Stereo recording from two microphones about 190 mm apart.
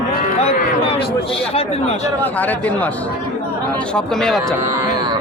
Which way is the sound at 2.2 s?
10° left (ahead or behind).